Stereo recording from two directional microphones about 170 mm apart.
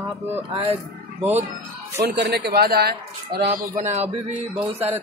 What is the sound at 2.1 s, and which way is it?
A man's voice, 80° right.